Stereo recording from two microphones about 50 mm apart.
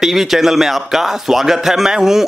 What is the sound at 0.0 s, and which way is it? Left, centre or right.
A man's voice, centre.